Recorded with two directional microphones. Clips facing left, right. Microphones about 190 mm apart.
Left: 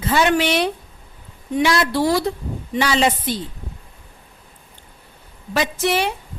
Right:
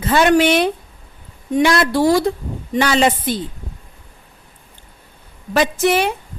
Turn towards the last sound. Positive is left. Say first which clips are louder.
# right 4 dB
turn(degrees=-50)  # may be behind; listen again after turning